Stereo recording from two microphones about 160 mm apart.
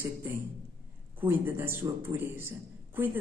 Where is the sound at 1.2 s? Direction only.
15° right (ahead or behind).